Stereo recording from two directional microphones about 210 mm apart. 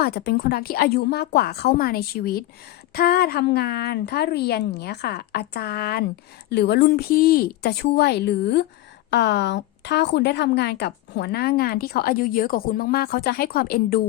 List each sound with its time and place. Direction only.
0.0 s a woman's voice: 50° left (ahead or behind)